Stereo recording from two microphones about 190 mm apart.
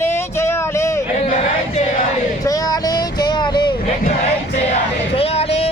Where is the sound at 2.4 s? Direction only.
20° left (ahead or behind).